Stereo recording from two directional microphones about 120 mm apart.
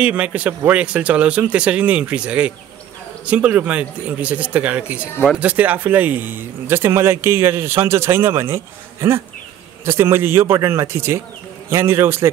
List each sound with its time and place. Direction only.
0.0 s speech: 10° right (ahead or behind)